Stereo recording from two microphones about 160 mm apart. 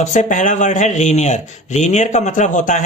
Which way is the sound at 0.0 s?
50° left (ahead or behind).